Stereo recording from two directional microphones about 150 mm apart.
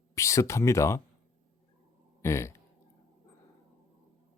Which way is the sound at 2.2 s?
20° left (ahead or behind).